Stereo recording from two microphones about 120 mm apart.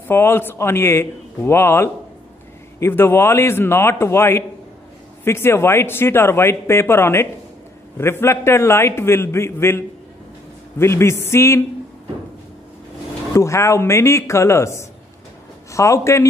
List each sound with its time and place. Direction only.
0.1 s speech: 20° left (ahead or behind)
13.3 s speech: 25° left (ahead or behind)